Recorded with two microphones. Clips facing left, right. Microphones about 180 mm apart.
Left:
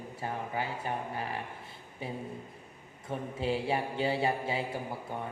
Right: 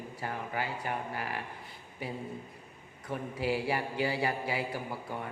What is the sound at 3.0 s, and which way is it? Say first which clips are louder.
Speech: even; 25° left (ahead or behind).